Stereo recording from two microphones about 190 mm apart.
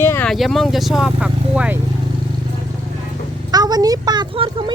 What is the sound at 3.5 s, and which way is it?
Speech, 20° right (ahead or behind).